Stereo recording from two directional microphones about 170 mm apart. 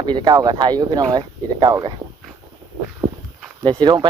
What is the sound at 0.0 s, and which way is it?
Speech, 25° right (ahead or behind).